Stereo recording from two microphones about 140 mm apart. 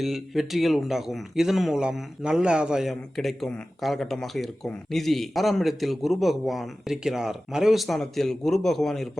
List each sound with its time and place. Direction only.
0.0 s speech: centre (ahead or behind)